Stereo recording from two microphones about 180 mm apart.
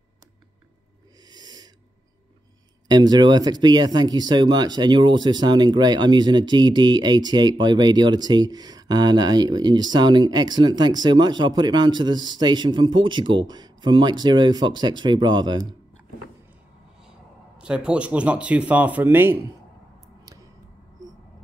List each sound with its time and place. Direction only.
1.3 s owl: 20° right (ahead or behind)
2.9 s speech: 25° right (ahead or behind)
17.6 s speech: 5° right (ahead or behind)